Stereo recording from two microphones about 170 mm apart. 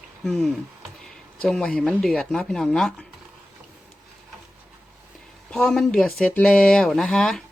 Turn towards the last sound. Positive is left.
turn(degrees=5)  # may be behind; listen again after turning